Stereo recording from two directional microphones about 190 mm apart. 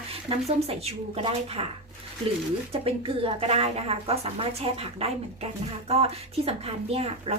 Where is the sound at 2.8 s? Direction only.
30° right (ahead or behind).